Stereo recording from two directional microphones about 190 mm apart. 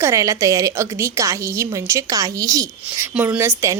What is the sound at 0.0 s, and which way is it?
A woman's voice, 15° right (ahead or behind).